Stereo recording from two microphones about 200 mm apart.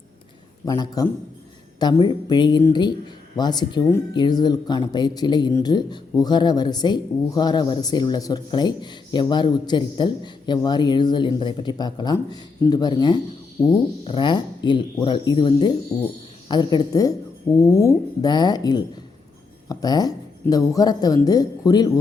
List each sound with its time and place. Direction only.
0.6 s speech: 20° left (ahead or behind)
15.9 s a woman's voice: 15° left (ahead or behind)